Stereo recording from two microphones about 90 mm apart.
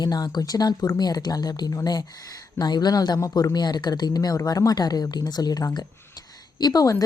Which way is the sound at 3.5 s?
50° left (ahead or behind).